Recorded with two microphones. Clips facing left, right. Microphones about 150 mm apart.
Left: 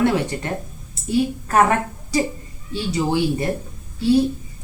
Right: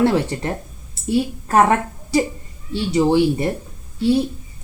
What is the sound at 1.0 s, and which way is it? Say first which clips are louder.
Speech: even; 30° right (ahead or behind).